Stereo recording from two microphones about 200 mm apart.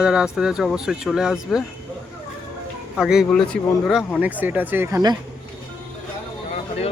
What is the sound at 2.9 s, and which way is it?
A man's voice, centre (ahead or behind).